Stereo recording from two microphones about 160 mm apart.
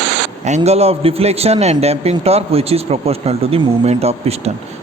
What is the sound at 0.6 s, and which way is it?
Speech, 40° right (ahead or behind).